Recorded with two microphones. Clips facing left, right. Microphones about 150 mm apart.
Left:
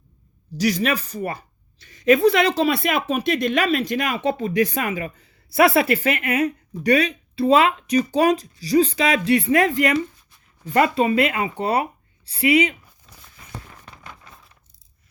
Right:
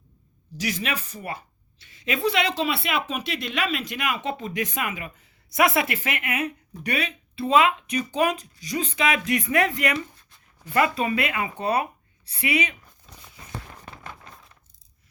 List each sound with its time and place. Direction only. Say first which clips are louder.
0.5 s speech: left 8 dB; 40° left (ahead or behind)
13.1 s walk: right 2 dB; centre (ahead or behind)